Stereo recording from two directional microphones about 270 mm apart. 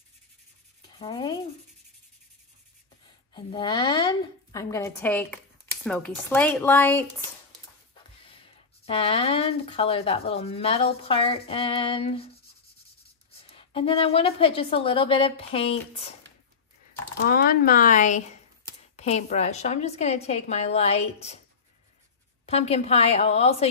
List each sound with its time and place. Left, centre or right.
0.9 s a sound: centre
3.3 s a woman's voice: centre
8.8 s speech: left
13.4 s speech: left
17.3 s speech: left
22.5 s speech: left